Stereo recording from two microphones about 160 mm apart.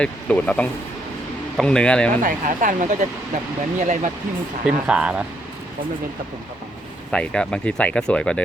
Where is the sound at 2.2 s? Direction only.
55° right (ahead or behind).